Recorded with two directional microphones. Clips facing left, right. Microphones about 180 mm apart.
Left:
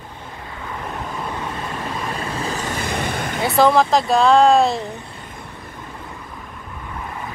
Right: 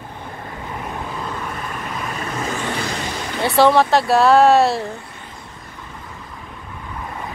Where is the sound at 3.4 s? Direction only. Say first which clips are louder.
Right 1 dB; centre (ahead or behind).